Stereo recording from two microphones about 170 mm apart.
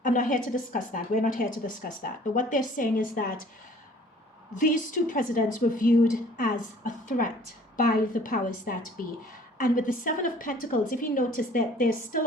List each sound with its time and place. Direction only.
0.0 s a woman's voice: 50° left (ahead or behind)
4.5 s a woman's voice: 50° left (ahead or behind)